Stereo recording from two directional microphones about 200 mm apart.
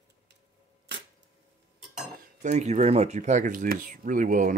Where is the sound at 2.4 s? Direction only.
35° right (ahead or behind).